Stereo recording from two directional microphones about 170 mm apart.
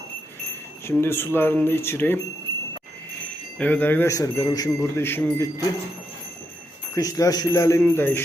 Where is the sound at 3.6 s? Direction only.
10° left (ahead or behind).